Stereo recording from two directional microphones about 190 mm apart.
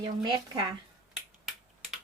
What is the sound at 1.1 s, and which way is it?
Finger snapping, centre (ahead or behind).